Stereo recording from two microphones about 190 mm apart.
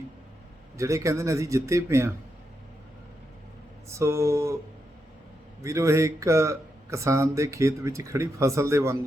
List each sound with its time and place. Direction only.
0.8 s speech: 15° right (ahead or behind)
3.8 s speech: 15° right (ahead or behind)
5.6 s speech: 15° right (ahead or behind)